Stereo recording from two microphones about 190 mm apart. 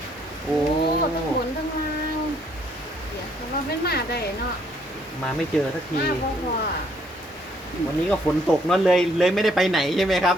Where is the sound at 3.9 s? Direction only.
55° left (ahead or behind).